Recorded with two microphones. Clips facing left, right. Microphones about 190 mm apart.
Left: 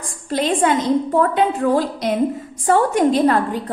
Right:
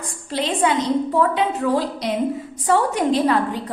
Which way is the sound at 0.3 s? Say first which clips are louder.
Left 3 dB; 45° left (ahead or behind).